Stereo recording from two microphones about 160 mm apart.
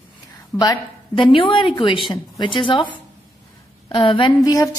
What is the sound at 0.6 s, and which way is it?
A woman's voice, 30° left (ahead or behind).